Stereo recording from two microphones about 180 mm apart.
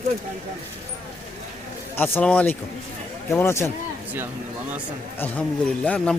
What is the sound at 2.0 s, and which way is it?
Speech, 10° left (ahead or behind).